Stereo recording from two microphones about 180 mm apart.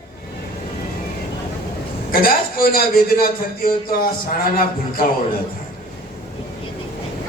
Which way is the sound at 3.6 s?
55° left (ahead or behind).